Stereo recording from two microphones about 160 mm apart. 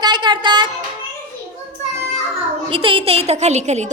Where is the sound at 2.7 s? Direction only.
35° right (ahead or behind).